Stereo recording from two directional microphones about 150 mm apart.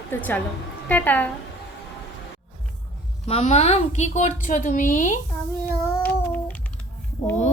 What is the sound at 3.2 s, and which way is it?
Speech, 45° left (ahead or behind).